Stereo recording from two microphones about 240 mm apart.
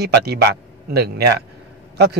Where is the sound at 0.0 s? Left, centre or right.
Right.